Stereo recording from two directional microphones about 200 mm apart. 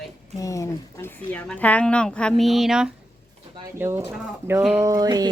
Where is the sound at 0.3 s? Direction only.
15° left (ahead or behind).